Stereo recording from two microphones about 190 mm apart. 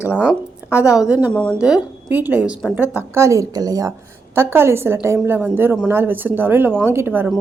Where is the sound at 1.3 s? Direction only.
5° left (ahead or behind); by 7.3 s 10° right (ahead or behind).